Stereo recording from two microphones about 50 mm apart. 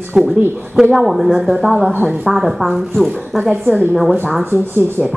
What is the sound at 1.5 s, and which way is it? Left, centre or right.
Speech, centre.